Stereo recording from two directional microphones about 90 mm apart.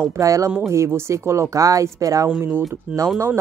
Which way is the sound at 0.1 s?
35° right (ahead or behind).